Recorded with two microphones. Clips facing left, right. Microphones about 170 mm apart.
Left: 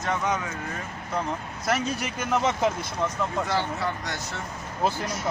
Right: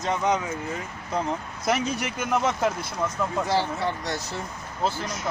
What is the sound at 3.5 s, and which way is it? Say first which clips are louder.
Speech: right 2 dB; 30° right (ahead or behind).